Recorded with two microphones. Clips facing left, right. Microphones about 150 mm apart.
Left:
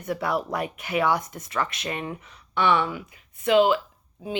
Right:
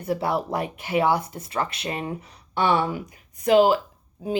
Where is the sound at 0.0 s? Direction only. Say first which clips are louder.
Right 2 dB; 30° right (ahead or behind).